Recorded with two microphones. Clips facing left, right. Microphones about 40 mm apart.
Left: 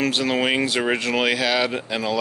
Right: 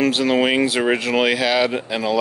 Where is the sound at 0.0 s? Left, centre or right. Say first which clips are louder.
Right 4 dB; centre.